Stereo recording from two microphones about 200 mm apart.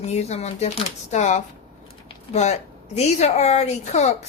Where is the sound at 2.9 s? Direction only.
35° left (ahead or behind).